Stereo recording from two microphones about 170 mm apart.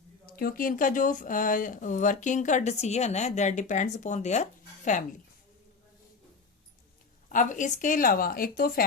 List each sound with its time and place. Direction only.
0.3 s speech: 60° left (ahead or behind); by 4.4 s 45° left (ahead or behind)
7.3 s speech: 50° left (ahead or behind)